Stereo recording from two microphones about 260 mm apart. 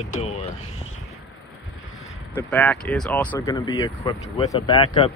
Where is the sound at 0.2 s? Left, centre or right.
Left.